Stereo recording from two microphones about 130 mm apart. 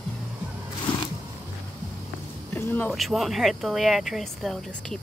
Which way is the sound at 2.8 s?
Centre (ahead or behind).